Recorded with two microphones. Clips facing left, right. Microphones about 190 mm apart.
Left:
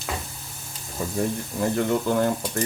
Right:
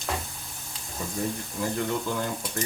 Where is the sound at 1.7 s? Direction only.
55° left (ahead or behind).